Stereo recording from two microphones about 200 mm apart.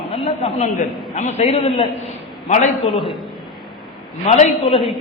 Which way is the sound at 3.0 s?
Centre (ahead or behind).